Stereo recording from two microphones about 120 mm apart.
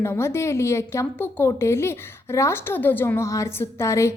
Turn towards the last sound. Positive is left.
turn(degrees=25)  # may be behind; listen again after turning